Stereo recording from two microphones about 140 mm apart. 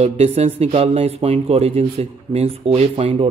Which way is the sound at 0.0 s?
45° right (ahead or behind).